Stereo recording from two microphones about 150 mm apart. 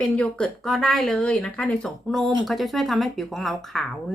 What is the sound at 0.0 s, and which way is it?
Speech, 5° left (ahead or behind).